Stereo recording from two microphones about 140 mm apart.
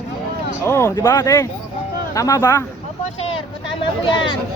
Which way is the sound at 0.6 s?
20° left (ahead or behind).